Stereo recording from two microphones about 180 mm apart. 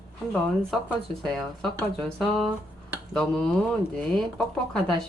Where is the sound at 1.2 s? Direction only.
Centre (ahead or behind).